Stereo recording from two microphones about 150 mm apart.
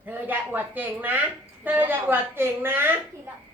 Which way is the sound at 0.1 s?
10° right (ahead or behind).